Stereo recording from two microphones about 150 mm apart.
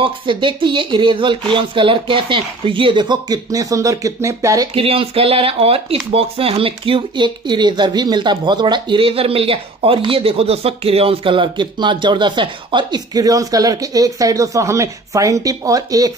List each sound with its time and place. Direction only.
0.0 s speech: 35° right (ahead or behind)
4.7 s speech: 40° right (ahead or behind); by 16.1 s 25° right (ahead or behind)